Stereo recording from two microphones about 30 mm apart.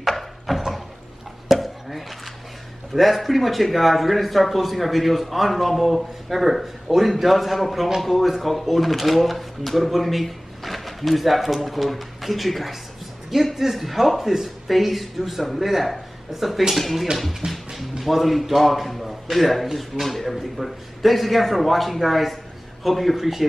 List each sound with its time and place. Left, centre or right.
0.5 s a sound: centre
2.9 s speech: centre
17.4 s speech: right
18.0 s speech: centre